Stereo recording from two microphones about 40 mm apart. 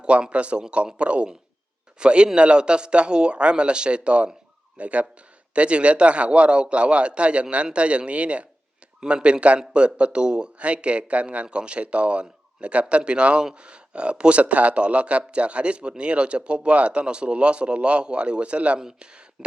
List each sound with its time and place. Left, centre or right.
0.0 s speech: right
18.8 s speech: centre